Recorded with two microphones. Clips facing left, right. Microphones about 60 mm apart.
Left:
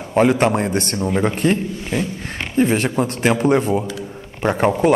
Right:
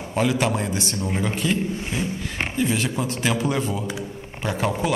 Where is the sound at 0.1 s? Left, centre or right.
Left.